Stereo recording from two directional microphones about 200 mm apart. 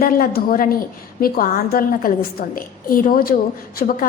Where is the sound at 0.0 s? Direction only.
45° left (ahead or behind).